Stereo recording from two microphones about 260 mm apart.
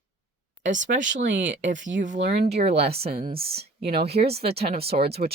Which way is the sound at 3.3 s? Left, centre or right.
Right.